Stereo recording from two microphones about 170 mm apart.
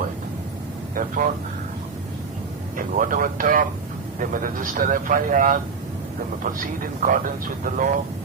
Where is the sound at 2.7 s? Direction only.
55° right (ahead or behind).